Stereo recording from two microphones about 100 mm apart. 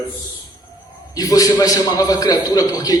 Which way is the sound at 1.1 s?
40° left (ahead or behind).